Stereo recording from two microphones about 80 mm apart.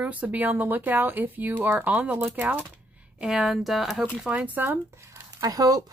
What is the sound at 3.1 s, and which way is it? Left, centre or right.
Speech, centre.